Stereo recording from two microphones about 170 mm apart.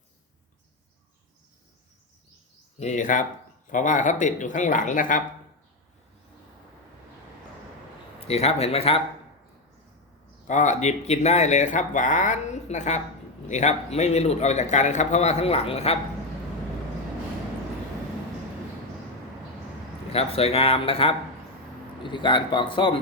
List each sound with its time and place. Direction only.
2.7 s speech: 45° left (ahead or behind)
8.2 s a man's voice: 35° left (ahead or behind)
10.4 s a man's voice: 45° left (ahead or behind)
20.1 s a man's voice: 35° left (ahead or behind)